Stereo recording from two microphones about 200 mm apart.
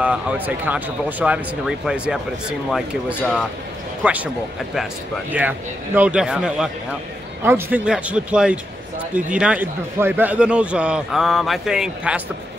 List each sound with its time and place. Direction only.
0.0 s a man's voice: 5° right (ahead or behind)
5.9 s a man's voice: 5° right (ahead or behind)